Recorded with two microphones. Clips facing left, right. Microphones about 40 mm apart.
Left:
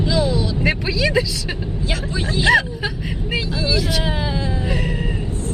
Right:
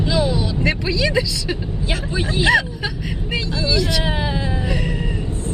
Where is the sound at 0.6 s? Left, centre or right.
Centre.